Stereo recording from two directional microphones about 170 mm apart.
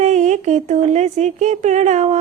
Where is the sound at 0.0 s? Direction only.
45° right (ahead or behind).